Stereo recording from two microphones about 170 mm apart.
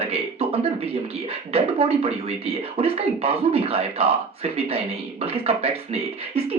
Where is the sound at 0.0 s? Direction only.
35° right (ahead or behind).